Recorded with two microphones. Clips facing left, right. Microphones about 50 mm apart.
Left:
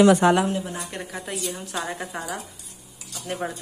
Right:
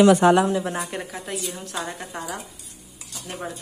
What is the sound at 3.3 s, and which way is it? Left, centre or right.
Speech, left.